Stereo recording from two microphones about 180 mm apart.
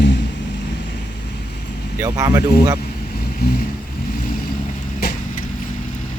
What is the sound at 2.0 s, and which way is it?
Speech, 20° right (ahead or behind).